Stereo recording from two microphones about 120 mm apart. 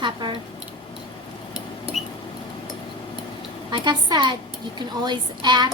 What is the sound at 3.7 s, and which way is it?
A woman's voice, 35° right (ahead or behind).